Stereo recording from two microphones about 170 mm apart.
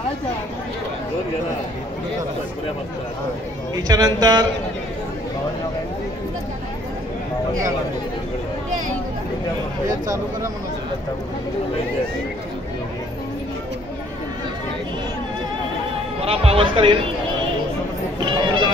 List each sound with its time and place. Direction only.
3.7 s a man's voice: 20° right (ahead or behind)
16.3 s speech: 35° right (ahead or behind)
18.2 s music: 30° right (ahead or behind)